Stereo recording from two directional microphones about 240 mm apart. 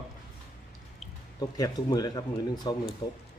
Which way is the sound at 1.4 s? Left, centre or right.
Centre.